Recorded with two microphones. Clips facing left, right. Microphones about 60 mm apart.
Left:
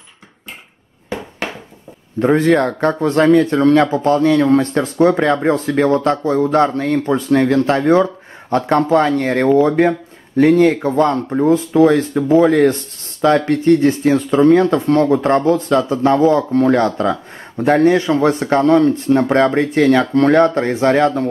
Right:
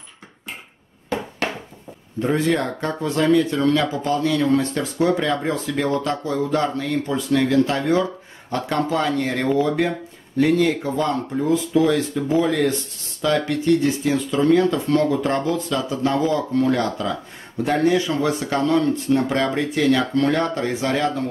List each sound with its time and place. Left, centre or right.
2.1 s speech: left